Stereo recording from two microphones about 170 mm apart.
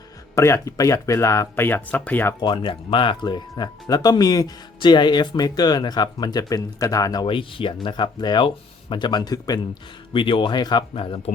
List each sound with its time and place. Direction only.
0.3 s speech: 15° left (ahead or behind)
2.4 s speech: 30° left (ahead or behind)